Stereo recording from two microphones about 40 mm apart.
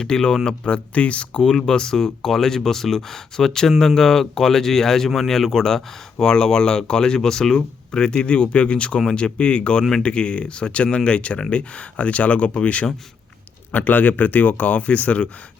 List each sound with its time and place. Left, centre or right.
0.0 s speech: centre
1.4 s speech: centre
13.7 s speech: left